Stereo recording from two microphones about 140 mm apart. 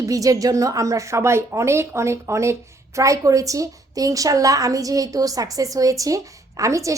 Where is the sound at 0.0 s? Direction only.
25° right (ahead or behind).